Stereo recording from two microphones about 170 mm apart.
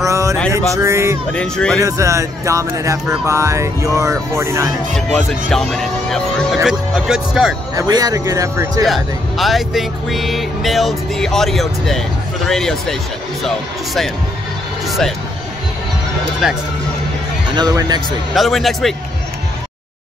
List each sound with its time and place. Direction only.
0.0 s a sound: 20° right (ahead or behind)
0.8 s music: 15° right (ahead or behind)
1.3 s speech: 5° left (ahead or behind)
1.8 s music: 20° right (ahead or behind)
4.9 s speech: centre (ahead or behind)
7.7 s speech: 20° right (ahead or behind)
8.8 s speech: centre (ahead or behind)
14.9 s vehicle: centre (ahead or behind)
17.6 s speech: 25° right (ahead or behind)
18.3 s speech: centre (ahead or behind)